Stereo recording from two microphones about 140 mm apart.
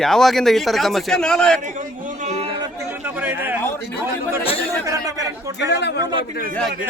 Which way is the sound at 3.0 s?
15° right (ahead or behind).